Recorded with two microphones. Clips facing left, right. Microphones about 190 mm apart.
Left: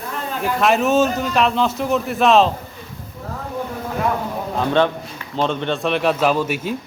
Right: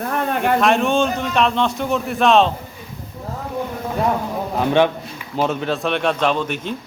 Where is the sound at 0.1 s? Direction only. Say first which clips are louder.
Right 3 dB; 60° right (ahead or behind).